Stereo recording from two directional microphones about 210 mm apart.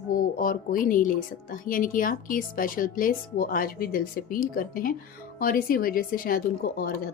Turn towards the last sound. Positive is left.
turn(degrees=45)  # may be behind; listen again after turning